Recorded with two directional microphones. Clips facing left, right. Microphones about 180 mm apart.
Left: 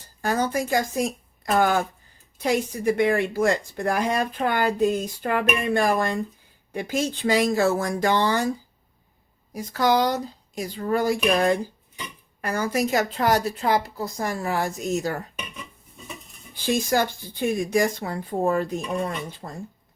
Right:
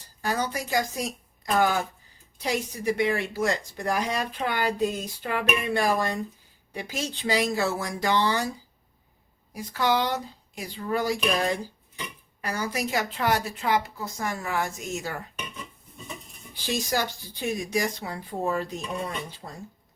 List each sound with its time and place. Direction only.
0.2 s speech: 50° left (ahead or behind)
9.5 s a woman's voice: 40° left (ahead or behind)
16.6 s speech: 50° left (ahead or behind)